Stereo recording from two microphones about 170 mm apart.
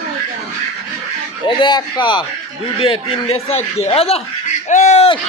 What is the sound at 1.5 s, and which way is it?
A man's voice, 25° left (ahead or behind).